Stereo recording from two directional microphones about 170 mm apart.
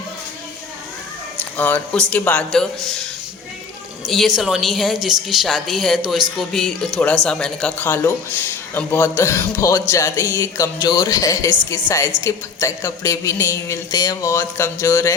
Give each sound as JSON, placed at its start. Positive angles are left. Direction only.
{"t": 1.5, "sound": "a woman's voice", "side_deg": 10}